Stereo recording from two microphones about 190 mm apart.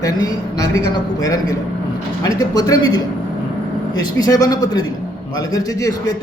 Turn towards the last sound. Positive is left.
turn(degrees=20)  # may be behind; listen again after turning